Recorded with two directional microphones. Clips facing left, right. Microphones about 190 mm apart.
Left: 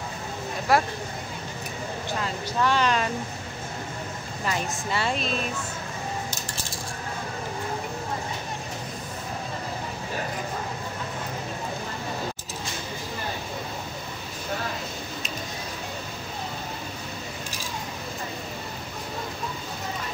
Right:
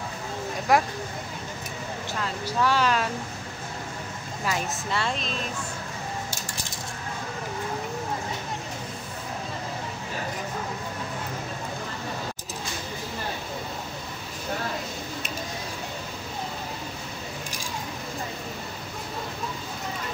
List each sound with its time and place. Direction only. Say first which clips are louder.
0.7 s speech: even; 15° right (ahead or behind)
2.4 s a woman's voice: even; 5° right (ahead or behind)
4.5 s a woman's voice: even; 5° left (ahead or behind)